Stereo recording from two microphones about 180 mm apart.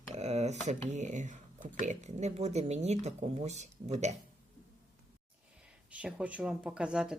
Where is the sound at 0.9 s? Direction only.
40° right (ahead or behind).